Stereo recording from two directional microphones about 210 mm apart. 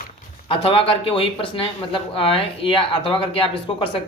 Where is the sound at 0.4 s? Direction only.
25° left (ahead or behind).